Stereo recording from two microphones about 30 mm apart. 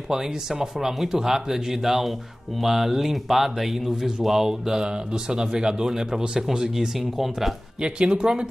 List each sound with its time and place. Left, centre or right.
0.1 s speech: centre
4.5 s speech: centre
7.8 s speech: right